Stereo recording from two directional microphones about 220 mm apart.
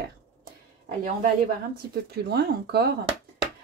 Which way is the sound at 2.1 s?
45° right (ahead or behind).